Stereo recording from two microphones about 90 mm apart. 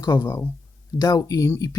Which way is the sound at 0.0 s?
30° left (ahead or behind).